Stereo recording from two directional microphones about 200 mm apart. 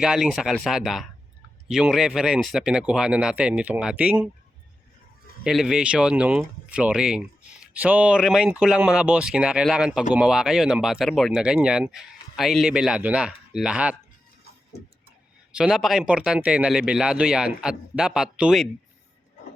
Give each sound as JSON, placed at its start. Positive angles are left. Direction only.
{"t": 0.0, "sound": "speech", "side_deg": 0}
{"t": 5.4, "sound": "speech", "side_deg": 0}
{"t": 14.7, "sound": "vehicle", "side_deg": 55}
{"t": 15.5, "sound": "speech", "side_deg": 0}